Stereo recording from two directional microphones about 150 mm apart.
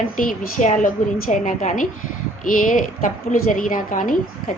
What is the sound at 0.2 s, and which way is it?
A woman's voice, 65° left (ahead or behind).